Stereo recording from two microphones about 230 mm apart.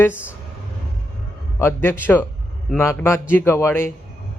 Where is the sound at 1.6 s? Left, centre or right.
Centre.